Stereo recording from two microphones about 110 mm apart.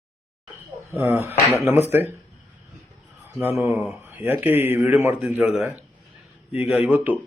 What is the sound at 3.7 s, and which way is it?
Speech, centre (ahead or behind).